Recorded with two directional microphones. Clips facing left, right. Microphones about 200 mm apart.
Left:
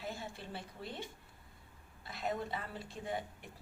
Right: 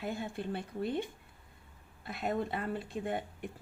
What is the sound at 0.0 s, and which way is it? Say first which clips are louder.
Speech: right 7 dB; 55° right (ahead or behind).